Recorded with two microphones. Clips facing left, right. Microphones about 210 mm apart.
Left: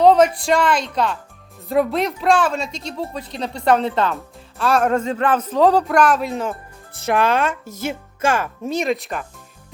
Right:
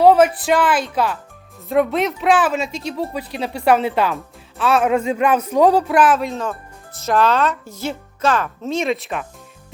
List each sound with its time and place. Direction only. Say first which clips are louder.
0.0 s speech: right 1 dB; 5° right (ahead or behind)
6.3 s speech: left 1 dB; 15° left (ahead or behind)
7.4 s speech: right 1 dB; 50° left (ahead or behind)
8.2 s speech: right 1 dB; 10° left (ahead or behind)